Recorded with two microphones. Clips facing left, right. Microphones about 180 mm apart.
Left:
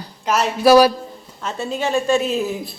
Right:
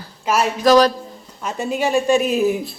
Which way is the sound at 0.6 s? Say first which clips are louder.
Left 2 dB; 10° left (ahead or behind).